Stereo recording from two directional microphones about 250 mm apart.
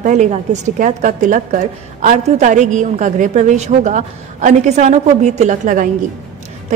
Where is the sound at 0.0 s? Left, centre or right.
Right.